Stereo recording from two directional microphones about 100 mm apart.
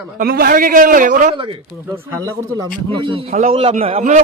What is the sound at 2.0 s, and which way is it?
Speech, 25° right (ahead or behind).